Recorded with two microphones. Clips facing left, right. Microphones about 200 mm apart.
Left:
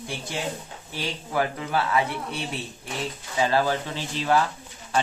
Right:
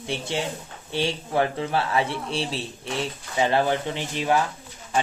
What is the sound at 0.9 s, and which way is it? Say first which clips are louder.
Speech: right 4 dB; 25° right (ahead or behind).